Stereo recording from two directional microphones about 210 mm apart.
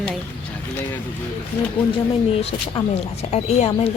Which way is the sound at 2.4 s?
25° left (ahead or behind).